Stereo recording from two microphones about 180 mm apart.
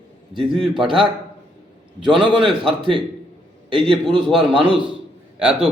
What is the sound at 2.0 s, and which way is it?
A man's voice, 25° right (ahead or behind).